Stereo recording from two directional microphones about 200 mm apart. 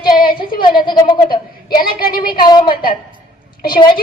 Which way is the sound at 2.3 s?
20° left (ahead or behind).